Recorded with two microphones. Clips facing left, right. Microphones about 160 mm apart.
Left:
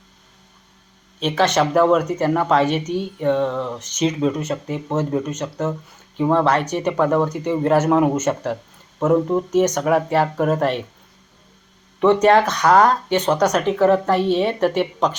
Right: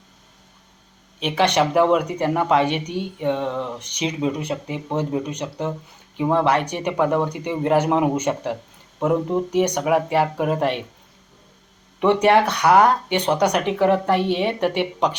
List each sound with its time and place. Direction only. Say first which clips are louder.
1.2 s speech: left 1 dB; 15° right (ahead or behind)
11.9 s speech: left 2 dB; 15° right (ahead or behind)